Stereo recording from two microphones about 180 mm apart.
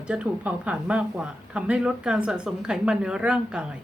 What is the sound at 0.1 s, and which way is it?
Speech, 5° right (ahead or behind).